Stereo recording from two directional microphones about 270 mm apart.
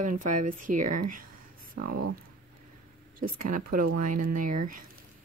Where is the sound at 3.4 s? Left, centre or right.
Right.